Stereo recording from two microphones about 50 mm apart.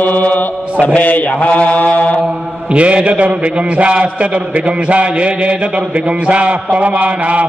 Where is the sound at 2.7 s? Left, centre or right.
Right.